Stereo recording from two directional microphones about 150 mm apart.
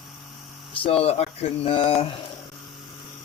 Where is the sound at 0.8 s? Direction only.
40° left (ahead or behind).